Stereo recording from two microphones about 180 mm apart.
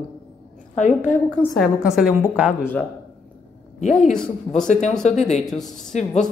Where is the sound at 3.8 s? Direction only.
40° left (ahead or behind).